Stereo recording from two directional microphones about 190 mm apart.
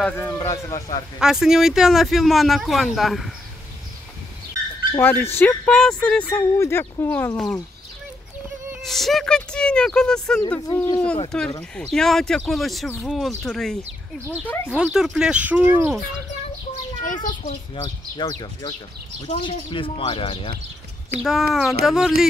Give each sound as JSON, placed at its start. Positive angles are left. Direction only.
{"t": 0.0, "sound": "speech", "side_deg": 10}
{"t": 1.2, "sound": "speech", "side_deg": -5}
{"t": 4.9, "sound": "speech", "side_deg": 10}
{"t": 8.8, "sound": "speech", "side_deg": 0}
{"t": 10.7, "sound": "speech", "side_deg": 15}
{"t": 14.7, "sound": "speech", "side_deg": -5}
{"t": 17.0, "sound": "speech", "side_deg": 45}
{"t": 17.7, "sound": "speech", "side_deg": 25}
{"t": 21.2, "sound": "speech", "side_deg": -5}